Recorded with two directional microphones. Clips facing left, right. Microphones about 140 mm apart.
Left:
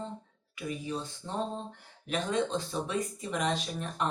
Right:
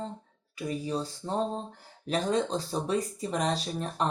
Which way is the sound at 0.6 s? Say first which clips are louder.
Right 4 dB; 35° right (ahead or behind).